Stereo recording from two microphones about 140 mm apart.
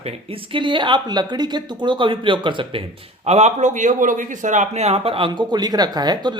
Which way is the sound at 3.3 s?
55° right (ahead or behind).